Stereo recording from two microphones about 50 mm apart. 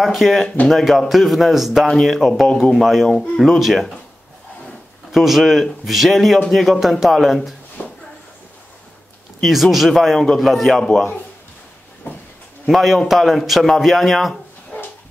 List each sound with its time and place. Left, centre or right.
0.0 s a man's voice: centre
1.9 s a man's voice: centre
3.4 s a man's voice: centre
7.8 s a sound: left
9.4 s a man's voice: centre
10.1 s a man's voice: centre
12.1 s a sound: left
12.6 s a man's voice: centre
14.7 s dog: left